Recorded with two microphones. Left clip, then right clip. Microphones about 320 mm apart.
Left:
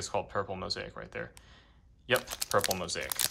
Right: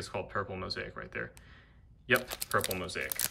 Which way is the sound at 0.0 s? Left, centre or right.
Centre.